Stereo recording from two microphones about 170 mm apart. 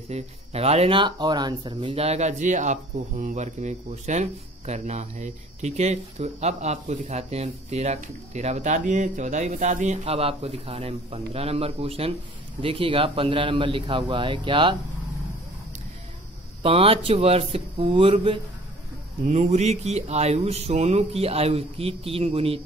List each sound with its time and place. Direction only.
0.1 s speech: 35° right (ahead or behind)
16.6 s speech: 35° right (ahead or behind)
19.2 s speech: 45° right (ahead or behind)